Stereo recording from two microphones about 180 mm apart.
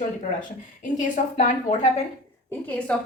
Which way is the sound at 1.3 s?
40° left (ahead or behind).